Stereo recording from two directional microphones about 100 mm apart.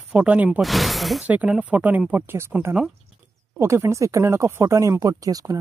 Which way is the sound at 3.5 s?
25° right (ahead or behind).